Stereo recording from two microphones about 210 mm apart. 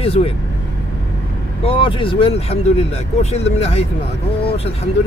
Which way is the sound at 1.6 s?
25° left (ahead or behind).